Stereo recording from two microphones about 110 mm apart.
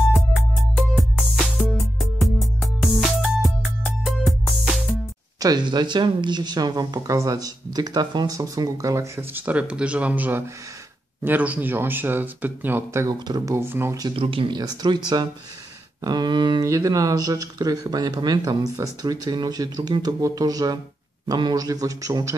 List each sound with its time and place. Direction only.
0.7 s music: centre (ahead or behind)
5.4 s speech: 40° right (ahead or behind); by 13.9 s 20° right (ahead or behind)
14.1 s speech: 55° right (ahead or behind)
14.6 s speech: 40° right (ahead or behind)
16.6 s speech: 30° right (ahead or behind)